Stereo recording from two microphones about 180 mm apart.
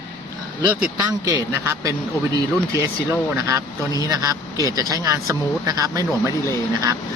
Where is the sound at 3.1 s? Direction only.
15° right (ahead or behind).